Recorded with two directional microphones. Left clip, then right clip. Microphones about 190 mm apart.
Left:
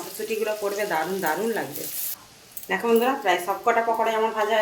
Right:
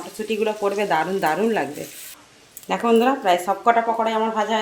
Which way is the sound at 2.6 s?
55° right (ahead or behind).